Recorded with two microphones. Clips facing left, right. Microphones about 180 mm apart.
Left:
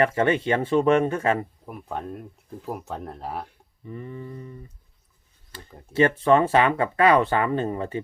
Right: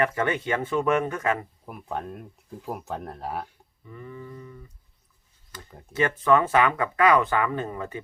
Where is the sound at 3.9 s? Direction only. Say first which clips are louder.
Left 4 dB; 25° left (ahead or behind).